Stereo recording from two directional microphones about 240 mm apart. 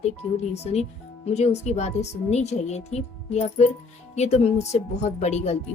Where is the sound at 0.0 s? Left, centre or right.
Left.